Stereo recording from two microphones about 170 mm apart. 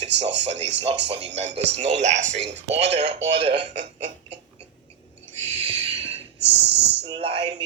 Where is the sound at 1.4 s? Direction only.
40° right (ahead or behind).